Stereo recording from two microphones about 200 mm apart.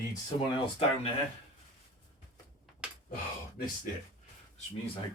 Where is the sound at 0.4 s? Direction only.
25° left (ahead or behind).